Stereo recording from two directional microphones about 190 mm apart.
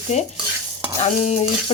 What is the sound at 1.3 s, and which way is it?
Speech, 35° left (ahead or behind).